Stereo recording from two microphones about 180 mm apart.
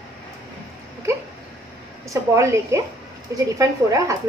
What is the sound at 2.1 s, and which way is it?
Speech, 15° right (ahead or behind).